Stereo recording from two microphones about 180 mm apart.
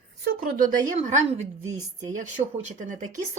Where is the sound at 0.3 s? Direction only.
50° right (ahead or behind).